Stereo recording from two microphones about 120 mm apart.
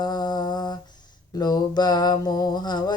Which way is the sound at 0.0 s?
35° left (ahead or behind).